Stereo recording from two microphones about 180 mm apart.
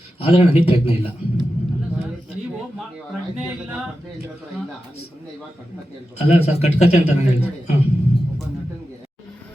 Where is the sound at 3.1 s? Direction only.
5° right (ahead or behind).